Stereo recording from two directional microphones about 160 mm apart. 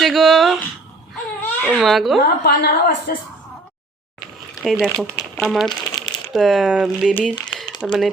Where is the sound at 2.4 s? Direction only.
75° left (ahead or behind).